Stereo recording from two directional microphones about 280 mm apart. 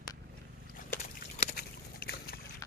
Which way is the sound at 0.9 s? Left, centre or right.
Left.